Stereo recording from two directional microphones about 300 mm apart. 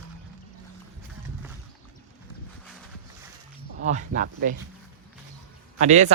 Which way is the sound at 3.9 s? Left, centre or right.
Right.